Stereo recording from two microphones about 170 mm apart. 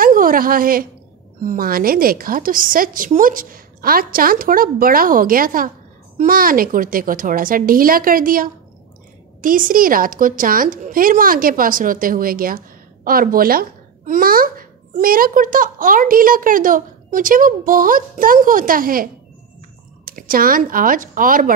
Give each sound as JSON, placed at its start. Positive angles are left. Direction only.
{"t": 0.0, "sound": "a woman's voice", "side_deg": -55}
{"t": 20.1, "sound": "a woman's voice", "side_deg": -55}